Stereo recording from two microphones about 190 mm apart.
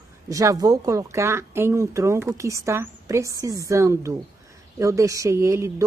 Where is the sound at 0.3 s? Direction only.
15° right (ahead or behind).